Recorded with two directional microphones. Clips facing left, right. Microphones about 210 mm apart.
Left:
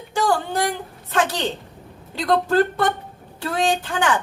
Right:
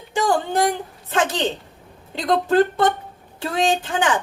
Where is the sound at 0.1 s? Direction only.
20° right (ahead or behind).